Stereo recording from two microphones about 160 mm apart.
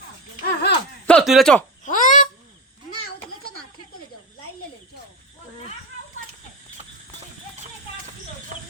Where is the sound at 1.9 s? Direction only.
55° left (ahead or behind).